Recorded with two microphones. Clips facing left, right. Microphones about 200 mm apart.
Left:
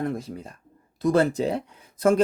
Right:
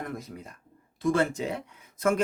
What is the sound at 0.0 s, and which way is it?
Speech, 30° left (ahead or behind).